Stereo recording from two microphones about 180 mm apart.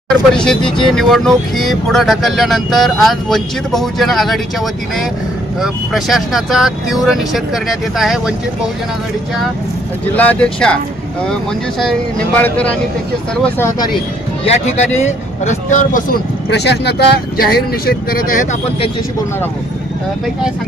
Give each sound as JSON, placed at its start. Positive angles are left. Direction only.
{"t": 0.3, "sound": "speech", "side_deg": 5}
{"t": 10.2, "sound": "speech", "side_deg": 10}
{"t": 12.4, "sound": "speech", "side_deg": 10}
{"t": 14.4, "sound": "speech", "side_deg": 40}
{"t": 16.5, "sound": "speech", "side_deg": 70}